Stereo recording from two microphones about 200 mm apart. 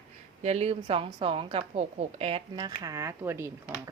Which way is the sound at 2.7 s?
15° right (ahead or behind).